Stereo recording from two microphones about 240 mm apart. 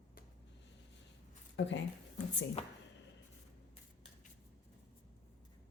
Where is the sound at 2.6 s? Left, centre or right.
Left.